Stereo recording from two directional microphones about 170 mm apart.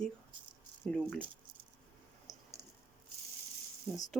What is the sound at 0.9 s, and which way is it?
Speech, 5° left (ahead or behind).